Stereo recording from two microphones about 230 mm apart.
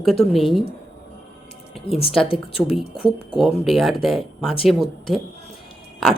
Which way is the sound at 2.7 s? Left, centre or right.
Centre.